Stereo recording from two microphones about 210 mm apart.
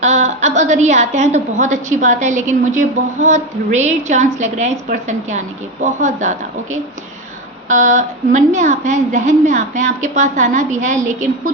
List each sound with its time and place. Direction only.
0.0 s a woman's voice: 35° right (ahead or behind)